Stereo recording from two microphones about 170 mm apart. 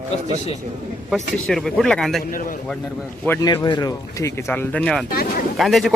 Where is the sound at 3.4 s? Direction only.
25° left (ahead or behind).